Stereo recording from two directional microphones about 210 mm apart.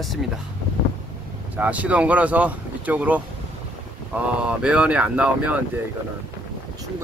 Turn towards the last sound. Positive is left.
turn(degrees=-5)  # may be behind; listen again after turning